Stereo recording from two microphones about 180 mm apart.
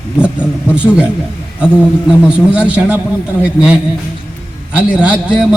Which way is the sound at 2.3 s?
5° right (ahead or behind).